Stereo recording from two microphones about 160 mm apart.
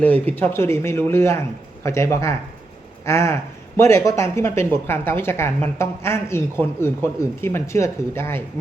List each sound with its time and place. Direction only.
0.0 s a woman's voice: 10° left (ahead or behind)